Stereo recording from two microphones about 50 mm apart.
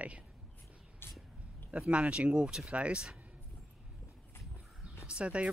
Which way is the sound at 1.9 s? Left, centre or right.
Right.